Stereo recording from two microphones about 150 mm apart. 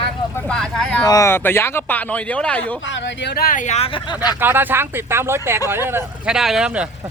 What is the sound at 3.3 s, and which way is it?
Speech, 70° left (ahead or behind).